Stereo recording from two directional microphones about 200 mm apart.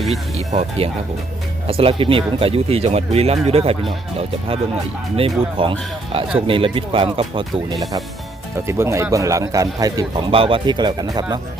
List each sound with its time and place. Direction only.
0.3 s speech: 35° right (ahead or behind)
8.6 s speech: 15° right (ahead or behind)